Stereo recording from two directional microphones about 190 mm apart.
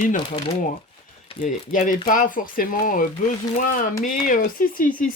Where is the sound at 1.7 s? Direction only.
45° left (ahead or behind).